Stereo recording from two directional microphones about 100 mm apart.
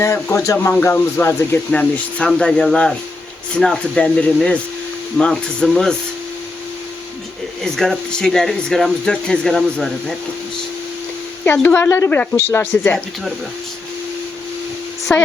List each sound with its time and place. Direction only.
0.0 s speech: 30° left (ahead or behind)
1.7 s speech: 10° left (ahead or behind)
7.6 s speech: 5° left (ahead or behind)
11.5 s speech: 20° left (ahead or behind)
15.1 s speech: 20° left (ahead or behind)